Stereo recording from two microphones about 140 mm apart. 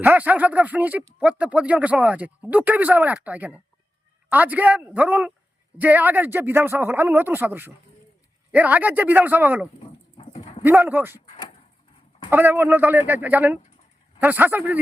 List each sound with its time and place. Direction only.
0.0 s speech: 10° right (ahead or behind)
12.3 s speech: 15° right (ahead or behind)